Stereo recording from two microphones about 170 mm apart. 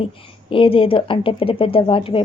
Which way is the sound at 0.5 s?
30° left (ahead or behind).